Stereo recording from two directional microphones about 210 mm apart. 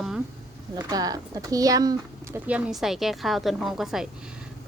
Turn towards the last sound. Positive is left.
turn(degrees=0)  # may be behind; listen again after turning